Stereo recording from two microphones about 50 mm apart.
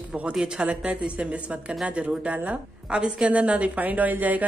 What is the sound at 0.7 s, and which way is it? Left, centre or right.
A woman's voice, right.